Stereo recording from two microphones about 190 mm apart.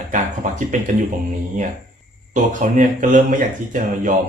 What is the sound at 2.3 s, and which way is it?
A man's voice, 40° right (ahead or behind).